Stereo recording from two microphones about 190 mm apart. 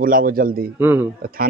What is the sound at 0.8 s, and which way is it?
Speech, 10° right (ahead or behind).